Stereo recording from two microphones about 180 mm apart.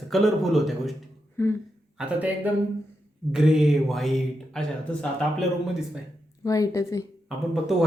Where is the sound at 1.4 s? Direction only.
15° left (ahead or behind).